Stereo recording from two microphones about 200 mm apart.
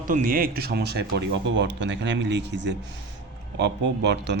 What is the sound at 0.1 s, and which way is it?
Speech, 45° right (ahead or behind).